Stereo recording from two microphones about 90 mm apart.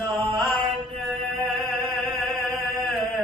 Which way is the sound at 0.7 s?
Centre (ahead or behind).